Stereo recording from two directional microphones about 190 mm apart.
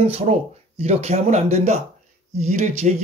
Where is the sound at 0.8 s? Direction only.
35° right (ahead or behind).